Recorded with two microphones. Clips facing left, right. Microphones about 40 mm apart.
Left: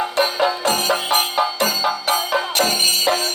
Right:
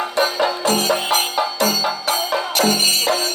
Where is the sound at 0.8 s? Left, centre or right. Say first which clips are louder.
Even; left.